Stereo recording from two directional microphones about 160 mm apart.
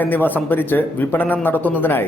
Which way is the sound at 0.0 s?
10° left (ahead or behind).